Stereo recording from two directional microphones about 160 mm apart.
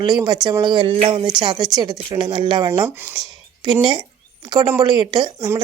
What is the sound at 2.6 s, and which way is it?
Speech, 15° right (ahead or behind).